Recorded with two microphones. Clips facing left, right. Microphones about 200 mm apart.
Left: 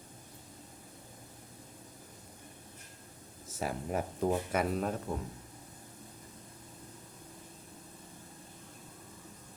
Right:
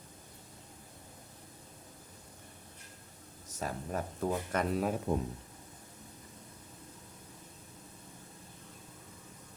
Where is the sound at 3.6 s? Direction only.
10° left (ahead or behind).